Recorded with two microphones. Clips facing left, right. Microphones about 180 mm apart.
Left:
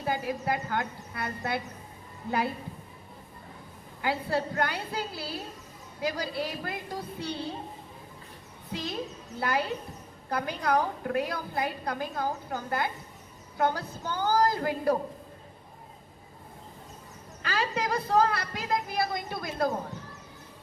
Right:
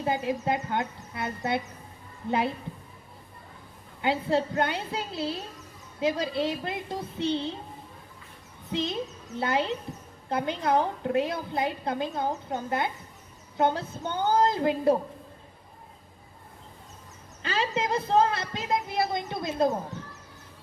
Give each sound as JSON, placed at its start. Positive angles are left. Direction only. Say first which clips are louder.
{"t": 0.0, "sound": "a woman's voice", "louder": "right 3 dB", "side_deg": -25}
{"t": 4.0, "sound": "a woman's voice", "louder": "right 3 dB", "side_deg": -25}
{"t": 8.7, "sound": "a woman's voice", "louder": "right 4 dB", "side_deg": -25}
{"t": 17.4, "sound": "a woman's voice", "louder": "right 2 dB", "side_deg": -25}